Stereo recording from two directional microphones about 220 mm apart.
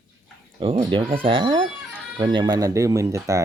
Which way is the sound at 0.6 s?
20° right (ahead or behind).